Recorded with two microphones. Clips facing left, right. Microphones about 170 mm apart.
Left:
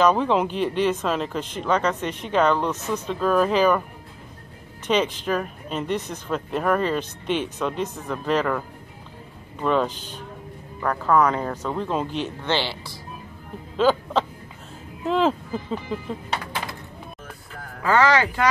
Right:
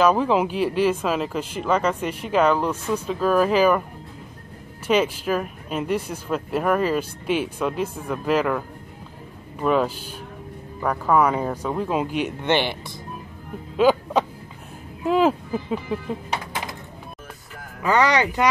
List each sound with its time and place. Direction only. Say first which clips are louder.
0.0 s speech: right 1 dB; 5° right (ahead or behind)
4.8 s speech: right 2 dB; 5° right (ahead or behind)
17.8 s speech: even; 15° right (ahead or behind)